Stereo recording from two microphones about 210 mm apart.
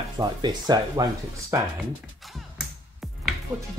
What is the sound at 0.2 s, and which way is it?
Speech, 20° right (ahead or behind).